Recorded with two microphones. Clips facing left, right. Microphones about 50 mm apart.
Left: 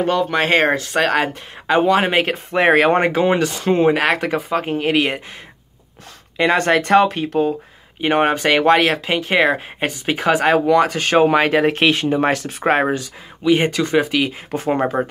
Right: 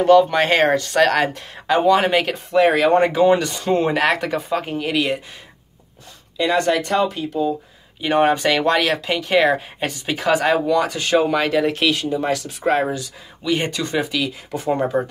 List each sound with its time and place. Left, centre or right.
0.2 s speech: centre; by 3.6 s left
3.6 s speech: centre
6.3 s speech: left
8.0 s speech: left
13.4 s speech: left